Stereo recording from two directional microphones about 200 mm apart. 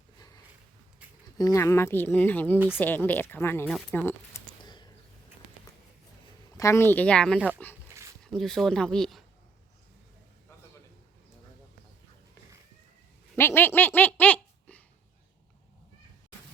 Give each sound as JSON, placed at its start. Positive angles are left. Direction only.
{"t": 1.4, "sound": "speech", "side_deg": 15}
{"t": 4.6, "sound": "a sound", "side_deg": 20}
{"t": 6.6, "sound": "speech", "side_deg": 15}
{"t": 7.3, "sound": "speech", "side_deg": -10}
{"t": 8.2, "sound": "speech", "side_deg": 0}
{"t": 13.3, "sound": "speech", "side_deg": 10}